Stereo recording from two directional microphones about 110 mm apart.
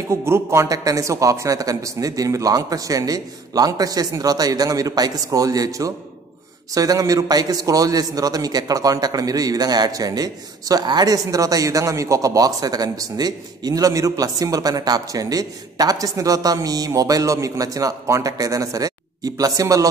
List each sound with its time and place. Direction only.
0.1 s a man's voice: 25° right (ahead or behind)